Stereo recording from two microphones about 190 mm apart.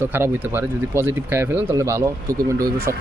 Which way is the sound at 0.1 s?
10° right (ahead or behind).